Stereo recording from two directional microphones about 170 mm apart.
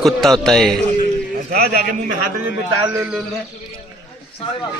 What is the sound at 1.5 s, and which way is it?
Speech, 65° right (ahead or behind).